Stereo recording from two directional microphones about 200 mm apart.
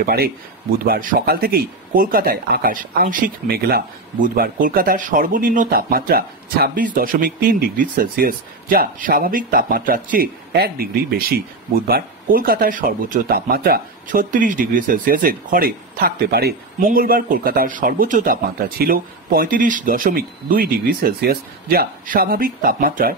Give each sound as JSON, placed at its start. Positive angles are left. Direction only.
{"t": 0.0, "sound": "speech", "side_deg": -50}